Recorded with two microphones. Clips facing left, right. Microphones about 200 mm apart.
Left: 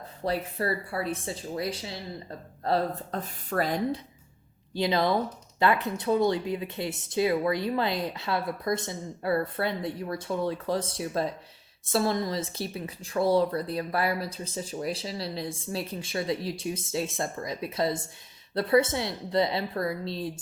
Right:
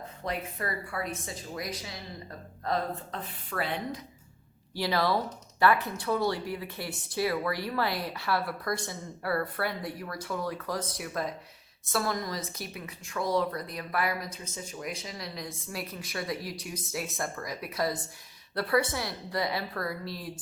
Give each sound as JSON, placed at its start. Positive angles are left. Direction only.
{"t": 0.3, "sound": "speech", "side_deg": 30}
{"t": 4.7, "sound": "speech", "side_deg": 20}